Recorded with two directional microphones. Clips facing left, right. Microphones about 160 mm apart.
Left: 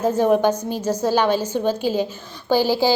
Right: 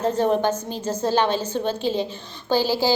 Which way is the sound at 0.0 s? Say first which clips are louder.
Left 3 dB; 10° left (ahead or behind).